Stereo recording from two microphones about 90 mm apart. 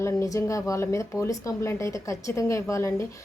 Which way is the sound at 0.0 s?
35° left (ahead or behind).